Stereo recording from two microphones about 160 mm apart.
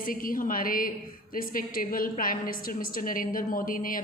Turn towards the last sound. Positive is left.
turn(degrees=60)  # may be behind; listen again after turning